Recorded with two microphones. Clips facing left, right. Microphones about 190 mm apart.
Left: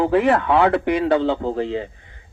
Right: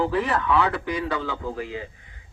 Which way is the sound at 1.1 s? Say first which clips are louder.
Left 10 dB; 25° left (ahead or behind).